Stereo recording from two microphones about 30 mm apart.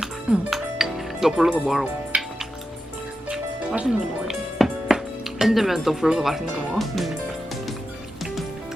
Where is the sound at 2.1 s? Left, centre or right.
Right.